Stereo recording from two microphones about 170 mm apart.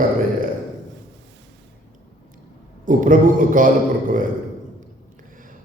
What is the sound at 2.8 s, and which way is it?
A man's voice, 50° right (ahead or behind).